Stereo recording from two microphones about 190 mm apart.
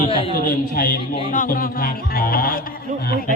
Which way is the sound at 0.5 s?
50° left (ahead or behind).